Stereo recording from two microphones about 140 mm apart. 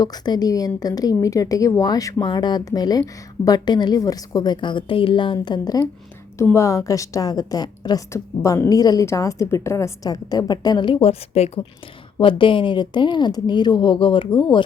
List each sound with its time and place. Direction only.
0.0 s a woman's voice: 30° left (ahead or behind)